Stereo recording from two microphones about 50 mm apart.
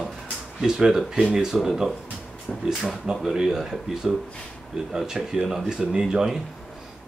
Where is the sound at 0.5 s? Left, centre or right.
Centre.